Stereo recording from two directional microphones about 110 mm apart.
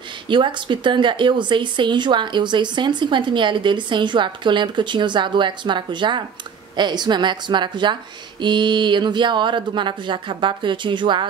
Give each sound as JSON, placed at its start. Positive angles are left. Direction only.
{"t": 0.3, "sound": "a woman's voice", "side_deg": -45}